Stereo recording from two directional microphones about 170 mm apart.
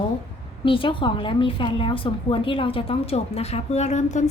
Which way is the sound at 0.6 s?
30° left (ahead or behind).